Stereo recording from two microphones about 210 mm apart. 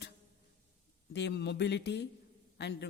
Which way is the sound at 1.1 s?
55° left (ahead or behind).